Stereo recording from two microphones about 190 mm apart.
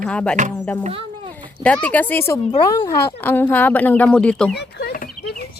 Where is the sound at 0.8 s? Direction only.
30° right (ahead or behind).